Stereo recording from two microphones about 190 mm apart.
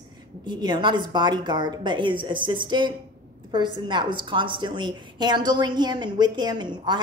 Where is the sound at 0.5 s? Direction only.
25° right (ahead or behind).